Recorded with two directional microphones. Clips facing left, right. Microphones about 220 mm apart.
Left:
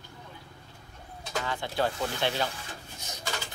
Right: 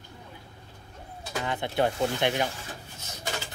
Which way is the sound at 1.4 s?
20° right (ahead or behind).